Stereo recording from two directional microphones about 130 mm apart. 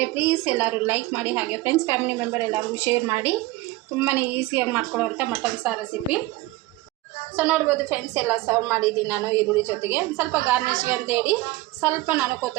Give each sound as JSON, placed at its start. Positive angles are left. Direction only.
{"t": 0.1, "sound": "a woman's voice", "side_deg": -15}
{"t": 7.3, "sound": "a woman's voice", "side_deg": -15}